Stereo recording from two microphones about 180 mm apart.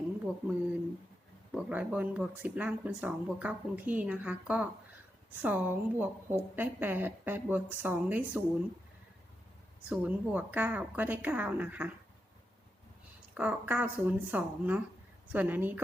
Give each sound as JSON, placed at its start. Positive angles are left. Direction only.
{"t": 1.5, "sound": "speech", "side_deg": -10}
{"t": 9.9, "sound": "speech", "side_deg": -10}
{"t": 13.3, "sound": "speech", "side_deg": -10}